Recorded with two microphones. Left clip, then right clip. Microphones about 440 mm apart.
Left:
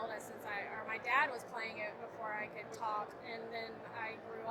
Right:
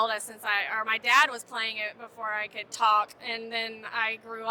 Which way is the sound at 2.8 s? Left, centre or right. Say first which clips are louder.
Right 17 dB; right.